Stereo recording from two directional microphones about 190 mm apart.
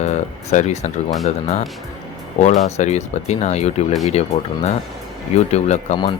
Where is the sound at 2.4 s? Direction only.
35° left (ahead or behind).